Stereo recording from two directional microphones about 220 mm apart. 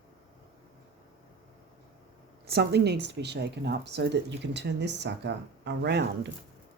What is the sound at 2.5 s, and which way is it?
Speech, 50° right (ahead or behind).